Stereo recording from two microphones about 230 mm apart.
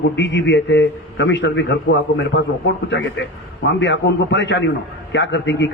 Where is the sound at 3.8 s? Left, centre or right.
Left.